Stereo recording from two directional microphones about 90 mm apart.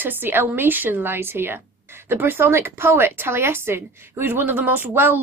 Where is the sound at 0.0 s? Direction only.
20° right (ahead or behind).